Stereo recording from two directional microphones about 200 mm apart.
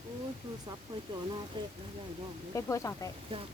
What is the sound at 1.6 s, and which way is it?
Speech, 25° right (ahead or behind).